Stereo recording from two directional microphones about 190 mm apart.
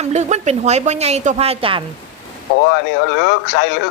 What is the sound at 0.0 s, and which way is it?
A woman's voice, 35° right (ahead or behind).